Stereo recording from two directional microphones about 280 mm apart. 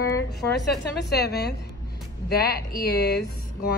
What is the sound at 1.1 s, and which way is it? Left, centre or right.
Speech, left.